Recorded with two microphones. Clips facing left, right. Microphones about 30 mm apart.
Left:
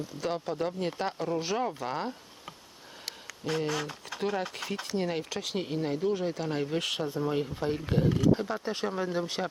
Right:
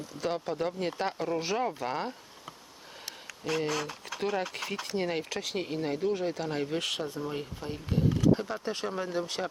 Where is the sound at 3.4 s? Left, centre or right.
Centre.